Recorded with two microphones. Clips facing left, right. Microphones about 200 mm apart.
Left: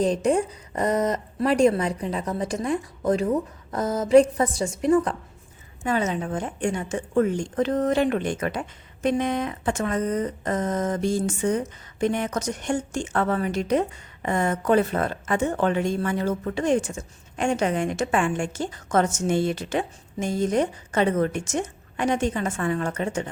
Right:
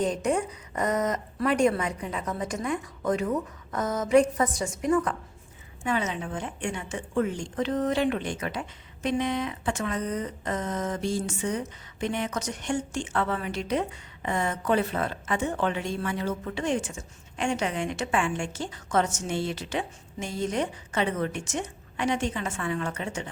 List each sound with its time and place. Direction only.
0.0 s a woman's voice: 30° left (ahead or behind)
5.8 s speech: 40° left (ahead or behind)